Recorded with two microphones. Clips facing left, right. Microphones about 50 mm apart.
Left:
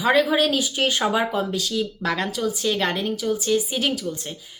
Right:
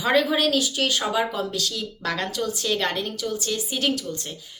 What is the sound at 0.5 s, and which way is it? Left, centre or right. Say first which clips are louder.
A woman's voice: left 1 dB; left.